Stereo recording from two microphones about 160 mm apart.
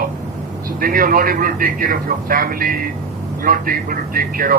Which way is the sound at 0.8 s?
65° right (ahead or behind).